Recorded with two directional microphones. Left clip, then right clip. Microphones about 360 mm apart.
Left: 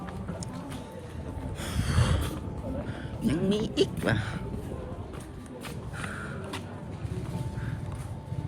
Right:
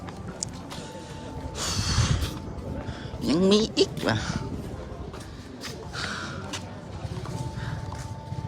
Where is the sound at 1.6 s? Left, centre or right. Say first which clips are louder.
Right 5 dB; centre.